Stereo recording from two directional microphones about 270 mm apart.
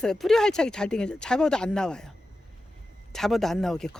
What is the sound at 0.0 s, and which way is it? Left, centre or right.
Speech, centre.